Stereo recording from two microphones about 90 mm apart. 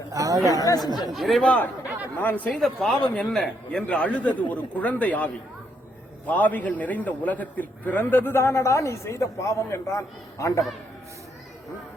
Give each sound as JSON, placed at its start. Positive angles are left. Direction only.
{"t": 0.1, "sound": "a sound", "side_deg": -40}
{"t": 0.5, "sound": "speech", "side_deg": 40}
{"t": 1.1, "sound": "speech", "side_deg": 0}
{"t": 1.5, "sound": "a man's voice", "side_deg": 20}
{"t": 2.6, "sound": "a man's voice", "side_deg": 0}